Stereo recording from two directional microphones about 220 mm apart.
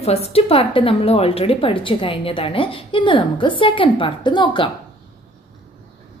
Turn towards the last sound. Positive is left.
turn(degrees=20)  # may be behind; listen again after turning